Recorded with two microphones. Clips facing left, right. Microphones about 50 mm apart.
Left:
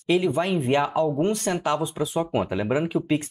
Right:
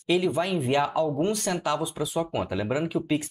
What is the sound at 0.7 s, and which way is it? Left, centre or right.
Speech, left.